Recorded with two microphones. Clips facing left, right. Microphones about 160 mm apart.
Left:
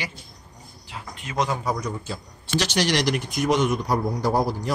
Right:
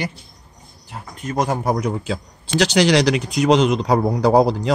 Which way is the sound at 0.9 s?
45° right (ahead or behind).